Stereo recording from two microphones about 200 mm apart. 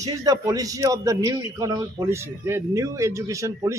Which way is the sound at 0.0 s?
20° right (ahead or behind).